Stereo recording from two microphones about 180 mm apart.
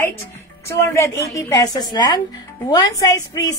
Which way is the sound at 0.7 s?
15° left (ahead or behind).